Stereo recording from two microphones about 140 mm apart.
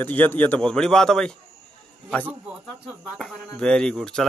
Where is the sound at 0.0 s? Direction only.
10° left (ahead or behind).